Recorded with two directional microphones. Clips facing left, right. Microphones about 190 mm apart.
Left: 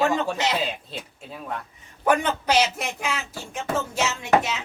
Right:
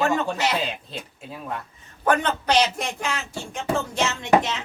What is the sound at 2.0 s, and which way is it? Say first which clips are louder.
A man's voice: even; 10° left (ahead or behind).